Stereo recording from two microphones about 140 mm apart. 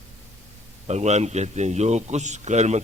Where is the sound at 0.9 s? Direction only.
55° right (ahead or behind).